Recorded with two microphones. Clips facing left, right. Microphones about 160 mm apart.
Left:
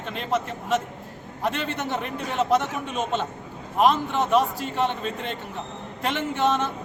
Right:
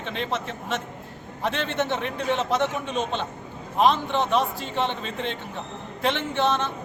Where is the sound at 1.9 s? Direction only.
Centre (ahead or behind).